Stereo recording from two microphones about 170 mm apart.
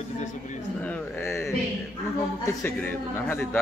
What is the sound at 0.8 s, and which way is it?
Speech, 10° left (ahead or behind).